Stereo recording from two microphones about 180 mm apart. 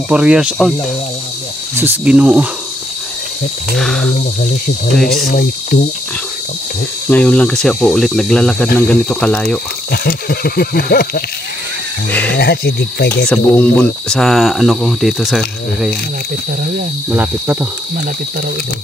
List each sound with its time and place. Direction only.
0.1 s speech: 5° right (ahead or behind)
1.8 s speech: 10° right (ahead or behind)
3.7 s speech: centre (ahead or behind)
5.3 s speech: 55° left (ahead or behind)
7.1 s speech: 5° left (ahead or behind)
9.8 s speech: 60° left (ahead or behind)
12.4 s speech: 60° left (ahead or behind)
13.3 s speech: 5° left (ahead or behind)
17.1 s speech: 10° right (ahead or behind)